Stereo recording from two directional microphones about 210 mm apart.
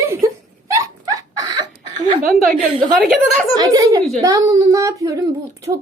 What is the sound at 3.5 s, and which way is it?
A woman's voice, 20° right (ahead or behind).